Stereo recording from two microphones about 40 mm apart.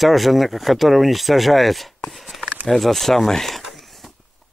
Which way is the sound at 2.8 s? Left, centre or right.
Centre.